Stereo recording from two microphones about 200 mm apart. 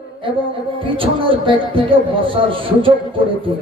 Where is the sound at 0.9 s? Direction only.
25° right (ahead or behind).